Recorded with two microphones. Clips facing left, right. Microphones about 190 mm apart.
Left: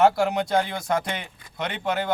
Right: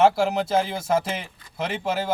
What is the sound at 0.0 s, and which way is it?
Speech, 5° right (ahead or behind).